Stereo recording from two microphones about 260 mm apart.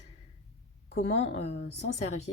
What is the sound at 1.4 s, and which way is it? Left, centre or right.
Speech, left.